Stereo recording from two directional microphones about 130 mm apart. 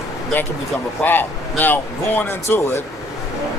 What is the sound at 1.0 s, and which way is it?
Speech, 15° left (ahead or behind).